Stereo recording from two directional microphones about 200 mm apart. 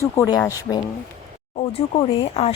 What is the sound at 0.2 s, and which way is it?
Speech, 15° left (ahead or behind).